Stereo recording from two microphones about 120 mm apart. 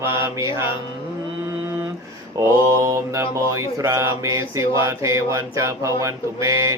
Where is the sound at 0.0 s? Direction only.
20° right (ahead or behind).